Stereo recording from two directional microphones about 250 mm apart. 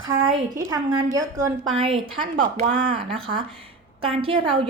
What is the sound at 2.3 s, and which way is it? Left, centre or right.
Speech, right.